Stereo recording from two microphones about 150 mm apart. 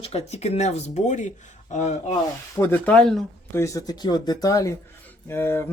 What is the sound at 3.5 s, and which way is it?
Speech, 20° left (ahead or behind).